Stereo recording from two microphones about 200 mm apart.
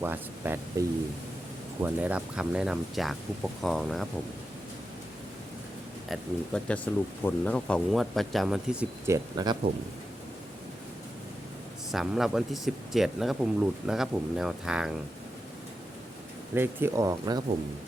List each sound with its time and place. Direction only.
0.0 s speech: 10° right (ahead or behind)
6.1 s speech: 5° left (ahead or behind); by 9.6 s 20° right (ahead or behind)
11.9 s speech: centre (ahead or behind)
16.6 s speech: 15° right (ahead or behind)